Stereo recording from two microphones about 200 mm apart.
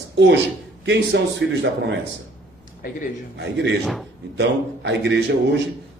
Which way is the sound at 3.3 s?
60° right (ahead or behind).